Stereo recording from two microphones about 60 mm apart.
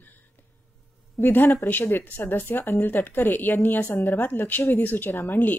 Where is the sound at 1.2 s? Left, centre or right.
Left.